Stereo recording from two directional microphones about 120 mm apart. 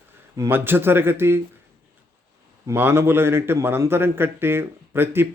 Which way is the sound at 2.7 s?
20° right (ahead or behind).